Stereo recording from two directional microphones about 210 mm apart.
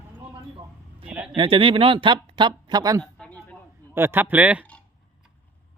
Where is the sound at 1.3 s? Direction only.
25° right (ahead or behind).